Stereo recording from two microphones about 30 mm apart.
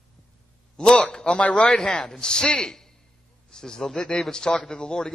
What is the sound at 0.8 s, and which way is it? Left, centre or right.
Speech, left.